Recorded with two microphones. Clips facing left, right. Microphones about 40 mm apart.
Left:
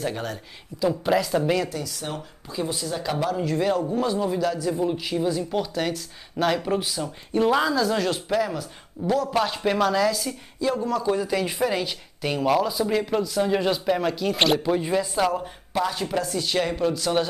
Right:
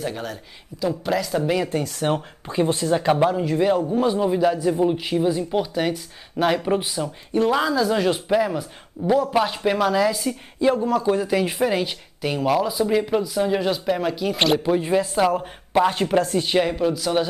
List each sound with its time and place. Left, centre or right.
0.0 s speech: centre
1.7 s speech: right
3.3 s speech: centre
7.3 s speech: centre
12.2 s speech: centre
15.4 s speech: right
16.7 s speech: centre